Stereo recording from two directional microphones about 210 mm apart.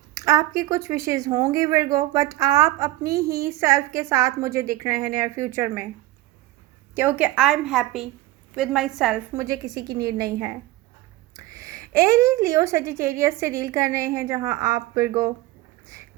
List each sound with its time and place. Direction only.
0.1 s speech: 15° right (ahead or behind)
6.9 s a woman's voice: 10° right (ahead or behind)
9.4 s speech: 15° right (ahead or behind)